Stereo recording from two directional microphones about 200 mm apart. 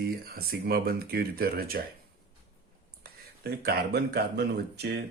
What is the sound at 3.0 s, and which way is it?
Speech, 50° right (ahead or behind).